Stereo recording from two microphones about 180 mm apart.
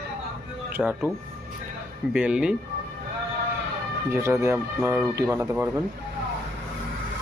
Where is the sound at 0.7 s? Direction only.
10° right (ahead or behind).